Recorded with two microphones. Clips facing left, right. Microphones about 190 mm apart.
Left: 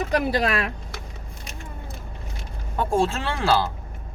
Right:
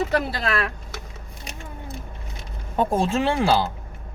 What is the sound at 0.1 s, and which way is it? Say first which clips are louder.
Speech: left 2 dB; 15° left (ahead or behind).